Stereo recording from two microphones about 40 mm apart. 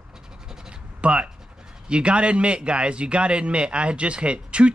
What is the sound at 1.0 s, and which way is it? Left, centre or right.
A man's voice, right.